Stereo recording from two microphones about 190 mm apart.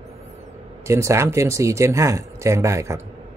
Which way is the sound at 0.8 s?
15° right (ahead or behind).